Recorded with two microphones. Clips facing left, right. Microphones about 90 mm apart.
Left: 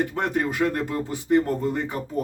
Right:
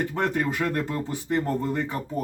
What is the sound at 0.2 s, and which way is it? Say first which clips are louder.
Speech: even; 25° left (ahead or behind).